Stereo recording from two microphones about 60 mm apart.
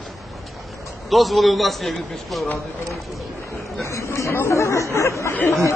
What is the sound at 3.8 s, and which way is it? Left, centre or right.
Speech, left.